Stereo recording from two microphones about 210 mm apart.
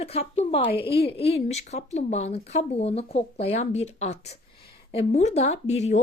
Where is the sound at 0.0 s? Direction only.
30° left (ahead or behind).